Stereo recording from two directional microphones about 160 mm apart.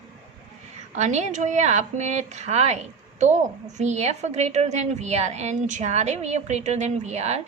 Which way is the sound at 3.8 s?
45° right (ahead or behind).